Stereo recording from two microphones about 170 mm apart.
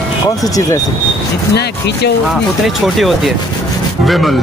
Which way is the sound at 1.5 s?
75° left (ahead or behind).